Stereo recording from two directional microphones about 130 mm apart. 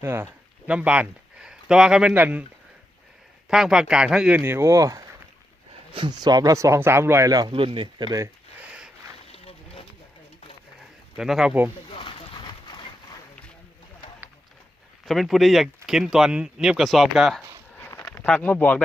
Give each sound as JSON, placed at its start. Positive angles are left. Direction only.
{"t": 0.0, "sound": "speech", "side_deg": -20}
{"t": 3.5, "sound": "speech", "side_deg": -5}
{"t": 4.4, "sound": "speech", "side_deg": -20}
{"t": 5.9, "sound": "speech", "side_deg": -35}
{"t": 7.5, "sound": "speech", "side_deg": -40}
{"t": 8.5, "sound": "a sound", "side_deg": -10}
{"t": 9.3, "sound": "a sound", "side_deg": 50}
{"t": 11.2, "sound": "speech", "side_deg": -5}
{"t": 11.9, "sound": "dog", "side_deg": 40}
{"t": 15.0, "sound": "speech", "side_deg": 0}
{"t": 17.7, "sound": "a sound", "side_deg": 15}
{"t": 18.3, "sound": "speech", "side_deg": 10}